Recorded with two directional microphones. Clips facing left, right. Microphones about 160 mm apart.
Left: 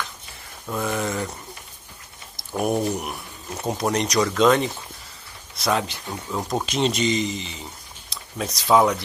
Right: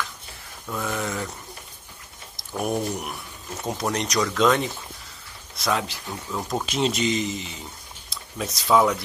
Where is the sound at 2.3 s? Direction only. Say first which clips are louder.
Left 3 dB; 5° left (ahead or behind).